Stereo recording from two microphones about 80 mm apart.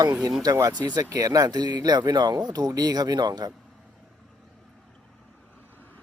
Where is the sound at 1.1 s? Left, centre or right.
Right.